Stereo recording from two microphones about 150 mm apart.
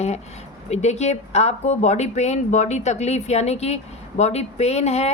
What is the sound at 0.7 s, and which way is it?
Speech, 50° left (ahead or behind).